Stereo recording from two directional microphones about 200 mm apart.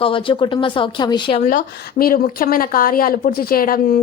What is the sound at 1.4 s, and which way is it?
Speech, 45° left (ahead or behind).